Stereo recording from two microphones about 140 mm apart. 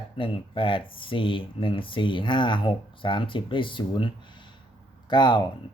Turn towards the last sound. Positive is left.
turn(degrees=35)  # may be behind; listen again after turning